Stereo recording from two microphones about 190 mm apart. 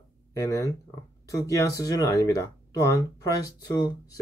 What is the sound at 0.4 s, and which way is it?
Speech, 15° left (ahead or behind).